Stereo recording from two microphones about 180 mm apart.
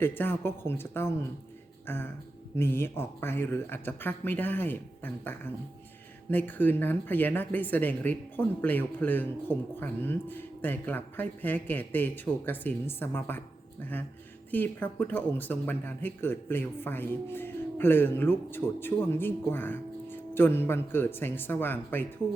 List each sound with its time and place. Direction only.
0.0 s speech: 10° left (ahead or behind)
14.5 s speech: 10° left (ahead or behind)